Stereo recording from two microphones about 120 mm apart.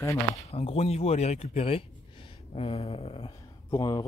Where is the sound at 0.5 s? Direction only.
55° left (ahead or behind).